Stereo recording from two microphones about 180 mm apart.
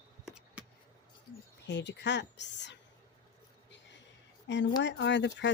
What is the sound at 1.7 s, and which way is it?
A woman's voice, 75° left (ahead or behind).